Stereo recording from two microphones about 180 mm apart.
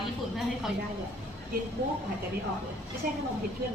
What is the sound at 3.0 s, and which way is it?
Speech, 55° right (ahead or behind).